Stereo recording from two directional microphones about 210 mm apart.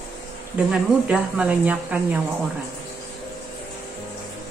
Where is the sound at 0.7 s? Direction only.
5° right (ahead or behind).